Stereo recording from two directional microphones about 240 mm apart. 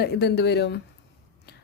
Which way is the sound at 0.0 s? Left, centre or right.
Left.